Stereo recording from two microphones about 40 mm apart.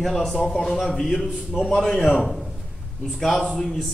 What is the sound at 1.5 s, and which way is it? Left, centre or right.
Speech, centre.